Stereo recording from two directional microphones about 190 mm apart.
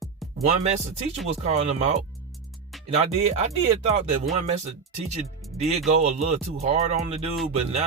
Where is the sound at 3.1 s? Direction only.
35° right (ahead or behind).